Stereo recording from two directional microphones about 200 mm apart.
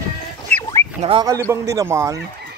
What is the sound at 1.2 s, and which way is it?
Speech, 15° right (ahead or behind).